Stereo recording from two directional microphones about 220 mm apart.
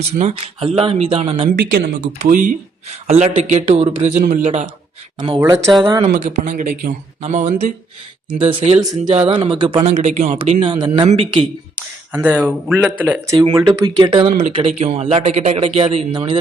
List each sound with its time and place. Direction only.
0.0 s speech: 30° right (ahead or behind)
1.7 s a man's voice: 50° right (ahead or behind); by 4.7 s 30° right (ahead or behind)
5.4 s speech: 15° right (ahead or behind)
5.9 s a man's voice: 30° right (ahead or behind)
12.1 s speech: 5° right (ahead or behind)